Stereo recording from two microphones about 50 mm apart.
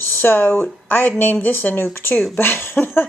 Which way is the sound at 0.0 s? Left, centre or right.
Left.